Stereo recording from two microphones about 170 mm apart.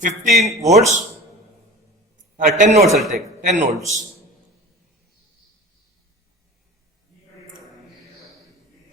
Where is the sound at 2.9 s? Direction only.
Centre (ahead or behind).